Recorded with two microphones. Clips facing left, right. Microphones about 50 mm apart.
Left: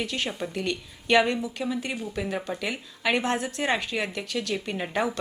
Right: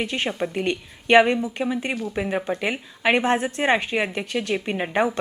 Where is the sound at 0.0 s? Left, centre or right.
Right.